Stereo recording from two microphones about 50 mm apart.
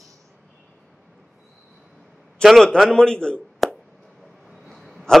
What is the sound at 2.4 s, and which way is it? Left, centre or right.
Speech, centre.